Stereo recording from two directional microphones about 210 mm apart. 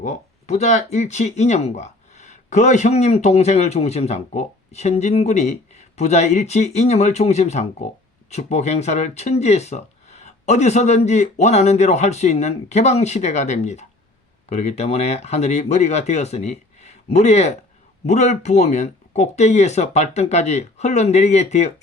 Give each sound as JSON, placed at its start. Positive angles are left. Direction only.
{"t": 0.0, "sound": "speech", "side_deg": 35}